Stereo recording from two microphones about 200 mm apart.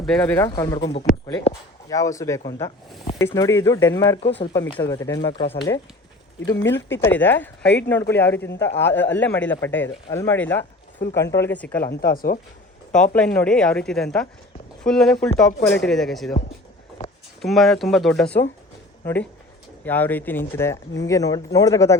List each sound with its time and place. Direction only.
0.0 s speech: 5° left (ahead or behind)
7.0 s speech: 10° left (ahead or behind)
11.9 s speech: 45° left (ahead or behind)
12.9 s speech: 5° left (ahead or behind)
17.4 s speech: centre (ahead or behind)